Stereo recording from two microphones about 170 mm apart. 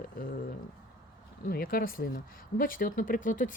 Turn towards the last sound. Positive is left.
turn(degrees=50)  # may be behind; listen again after turning